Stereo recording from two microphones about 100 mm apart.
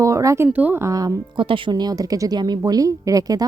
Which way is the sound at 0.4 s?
15° right (ahead or behind).